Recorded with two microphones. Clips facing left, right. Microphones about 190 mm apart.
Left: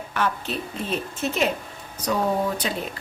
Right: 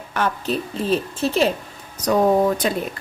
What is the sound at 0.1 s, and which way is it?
Speech, 40° right (ahead or behind).